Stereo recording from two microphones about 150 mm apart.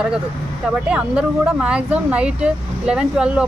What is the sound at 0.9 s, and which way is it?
Speech, 10° right (ahead or behind).